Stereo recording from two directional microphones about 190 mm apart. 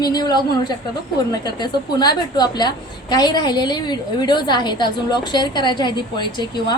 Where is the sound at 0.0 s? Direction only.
20° left (ahead or behind).